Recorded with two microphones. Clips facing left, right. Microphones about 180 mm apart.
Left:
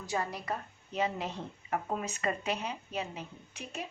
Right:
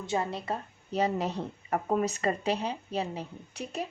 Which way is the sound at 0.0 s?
25° right (ahead or behind).